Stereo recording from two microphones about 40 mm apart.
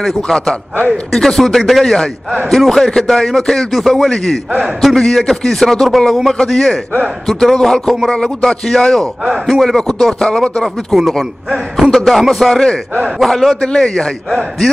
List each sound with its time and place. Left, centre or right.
0.0 s speech: centre
1.9 s speech: centre
4.1 s speech: centre
6.3 s speech: centre
8.1 s speech: centre
9.2 s a man's voice: centre
9.6 s speech: centre
13.6 s a man's voice: left